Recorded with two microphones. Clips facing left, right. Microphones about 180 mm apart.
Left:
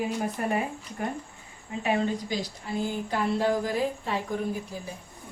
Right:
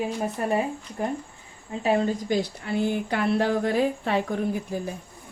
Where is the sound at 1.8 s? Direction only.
40° right (ahead or behind).